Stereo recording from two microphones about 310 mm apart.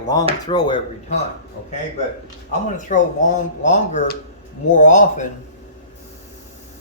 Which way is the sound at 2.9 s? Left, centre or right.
Left.